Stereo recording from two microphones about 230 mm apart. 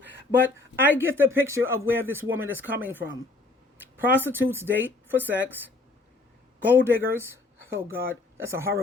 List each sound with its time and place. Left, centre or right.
0.3 s speech: centre
4.3 s speech: centre